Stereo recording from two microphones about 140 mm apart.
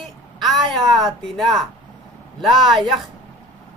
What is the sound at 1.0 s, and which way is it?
Speech, centre (ahead or behind).